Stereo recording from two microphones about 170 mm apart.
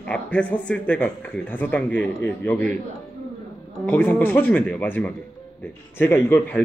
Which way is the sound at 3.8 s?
10° left (ahead or behind).